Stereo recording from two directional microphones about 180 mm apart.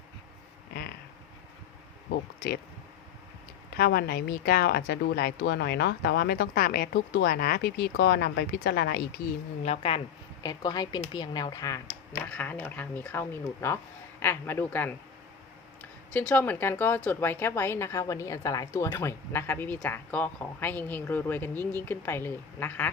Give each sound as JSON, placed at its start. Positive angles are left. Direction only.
{"t": 0.7, "sound": "a sound", "side_deg": 60}
{"t": 3.8, "sound": "speech", "side_deg": 60}
{"t": 9.6, "sound": "speech", "side_deg": 30}